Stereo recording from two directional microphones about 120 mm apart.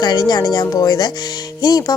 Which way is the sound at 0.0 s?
35° left (ahead or behind).